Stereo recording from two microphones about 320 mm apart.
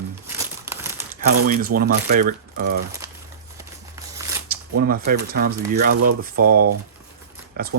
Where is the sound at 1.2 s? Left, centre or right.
Right.